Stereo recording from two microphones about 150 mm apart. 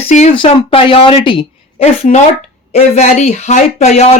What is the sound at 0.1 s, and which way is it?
Speech, 50° left (ahead or behind).